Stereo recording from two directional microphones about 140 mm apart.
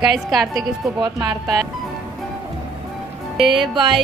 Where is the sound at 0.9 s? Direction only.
25° right (ahead or behind).